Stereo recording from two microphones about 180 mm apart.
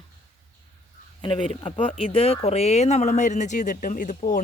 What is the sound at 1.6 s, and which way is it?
Speech, 30° left (ahead or behind).